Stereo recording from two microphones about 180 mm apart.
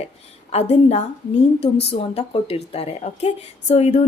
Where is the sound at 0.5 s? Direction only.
35° left (ahead or behind).